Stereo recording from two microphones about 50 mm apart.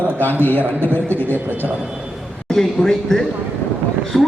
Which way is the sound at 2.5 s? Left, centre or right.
Centre.